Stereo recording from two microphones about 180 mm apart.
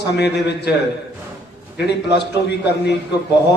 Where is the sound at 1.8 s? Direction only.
70° left (ahead or behind).